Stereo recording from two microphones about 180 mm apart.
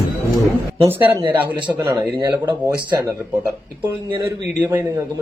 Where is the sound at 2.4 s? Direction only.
25° right (ahead or behind).